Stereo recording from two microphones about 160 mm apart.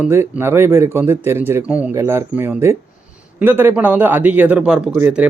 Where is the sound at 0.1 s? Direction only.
15° right (ahead or behind).